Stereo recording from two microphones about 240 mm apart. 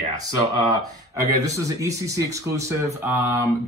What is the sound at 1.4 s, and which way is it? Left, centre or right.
Speech, centre.